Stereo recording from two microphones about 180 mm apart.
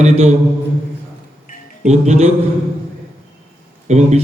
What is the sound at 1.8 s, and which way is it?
Speech, 35° right (ahead or behind).